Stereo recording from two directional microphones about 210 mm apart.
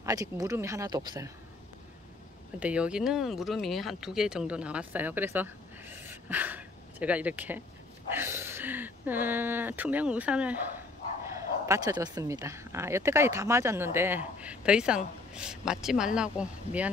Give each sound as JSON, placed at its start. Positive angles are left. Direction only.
{"t": 0.0, "sound": "speech", "side_deg": -15}
{"t": 2.6, "sound": "speech", "side_deg": -5}